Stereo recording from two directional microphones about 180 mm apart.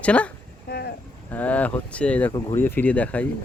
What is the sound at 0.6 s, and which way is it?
Speech, 60° left (ahead or behind).